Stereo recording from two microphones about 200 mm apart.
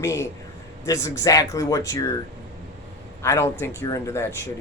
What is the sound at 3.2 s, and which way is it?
Speech, 15° left (ahead or behind).